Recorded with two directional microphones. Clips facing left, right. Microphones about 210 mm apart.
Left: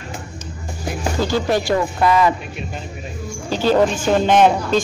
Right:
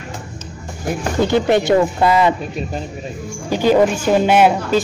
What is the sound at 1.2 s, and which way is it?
Speech, 20° right (ahead or behind).